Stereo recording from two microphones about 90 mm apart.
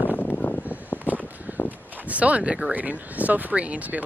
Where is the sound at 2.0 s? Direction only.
15° right (ahead or behind).